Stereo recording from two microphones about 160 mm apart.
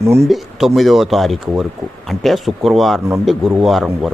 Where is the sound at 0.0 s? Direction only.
15° right (ahead or behind).